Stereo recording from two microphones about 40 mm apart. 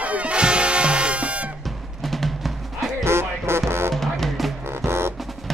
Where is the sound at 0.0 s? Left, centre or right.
Right.